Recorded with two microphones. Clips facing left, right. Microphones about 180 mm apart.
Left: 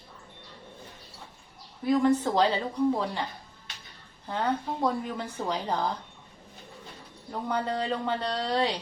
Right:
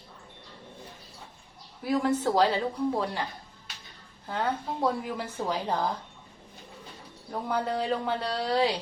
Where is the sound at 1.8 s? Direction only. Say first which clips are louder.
Left 3 dB; 5° right (ahead or behind).